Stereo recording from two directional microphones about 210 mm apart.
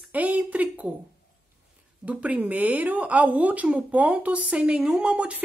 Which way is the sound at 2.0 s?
5° right (ahead or behind).